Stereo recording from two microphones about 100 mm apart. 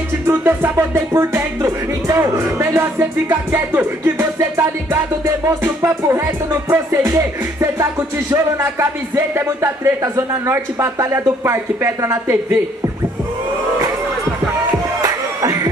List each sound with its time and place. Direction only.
0.3 s music: 20° right (ahead or behind)
15.0 s music: 35° right (ahead or behind)